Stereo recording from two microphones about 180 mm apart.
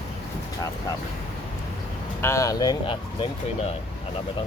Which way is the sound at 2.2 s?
15° left (ahead or behind).